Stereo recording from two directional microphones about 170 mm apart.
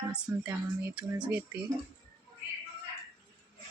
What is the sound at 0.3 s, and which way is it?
Speech, 15° right (ahead or behind).